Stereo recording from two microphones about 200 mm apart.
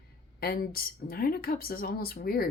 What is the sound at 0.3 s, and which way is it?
A woman's voice, 50° left (ahead or behind).